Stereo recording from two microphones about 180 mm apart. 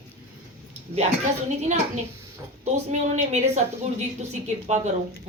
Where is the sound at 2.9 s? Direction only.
40° right (ahead or behind).